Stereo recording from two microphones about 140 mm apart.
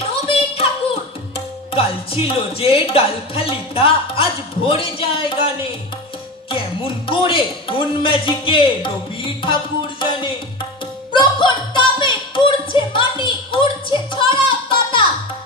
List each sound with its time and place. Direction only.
0.1 s a sound: 45° left (ahead or behind)
1.7 s speech: 40° left (ahead or behind)
9.4 s music: 35° left (ahead or behind)